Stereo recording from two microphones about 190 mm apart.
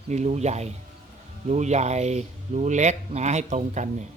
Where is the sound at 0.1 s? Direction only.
35° right (ahead or behind).